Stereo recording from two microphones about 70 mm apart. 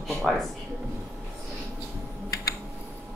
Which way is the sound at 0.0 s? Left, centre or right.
Centre.